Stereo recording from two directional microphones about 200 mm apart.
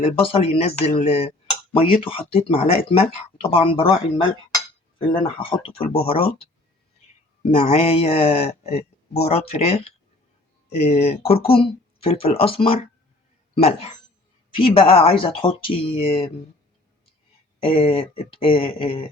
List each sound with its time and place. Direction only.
0.0 s speech: 30° left (ahead or behind)
7.5 s speech: 35° left (ahead or behind)
17.6 s speech: 30° left (ahead or behind)